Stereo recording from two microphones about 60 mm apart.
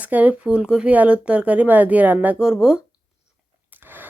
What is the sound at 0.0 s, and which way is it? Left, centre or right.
Speech, right.